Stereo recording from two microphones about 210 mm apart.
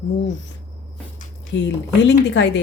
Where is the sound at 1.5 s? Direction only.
60° left (ahead or behind).